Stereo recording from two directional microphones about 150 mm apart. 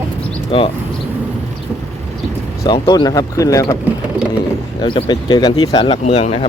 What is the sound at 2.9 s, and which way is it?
Speech, 25° left (ahead or behind).